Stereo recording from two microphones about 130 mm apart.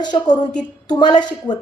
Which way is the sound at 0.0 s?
35° left (ahead or behind).